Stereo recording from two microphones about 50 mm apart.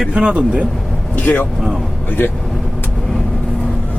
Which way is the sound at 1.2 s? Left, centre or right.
Left.